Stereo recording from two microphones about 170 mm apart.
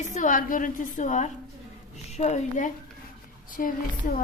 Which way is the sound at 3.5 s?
55° left (ahead or behind).